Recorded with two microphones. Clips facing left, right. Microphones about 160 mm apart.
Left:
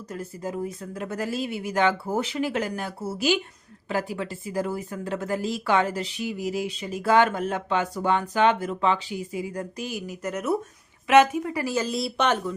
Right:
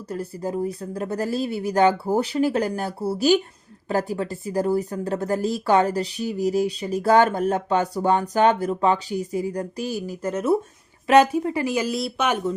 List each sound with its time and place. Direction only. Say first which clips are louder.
0.1 s speech: right 5 dB; 35° right (ahead or behind); by 11.9 s 15° right (ahead or behind)
11.9 s speech: right 1 dB; centre (ahead or behind)